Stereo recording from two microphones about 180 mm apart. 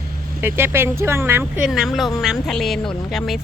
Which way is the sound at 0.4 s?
10° right (ahead or behind).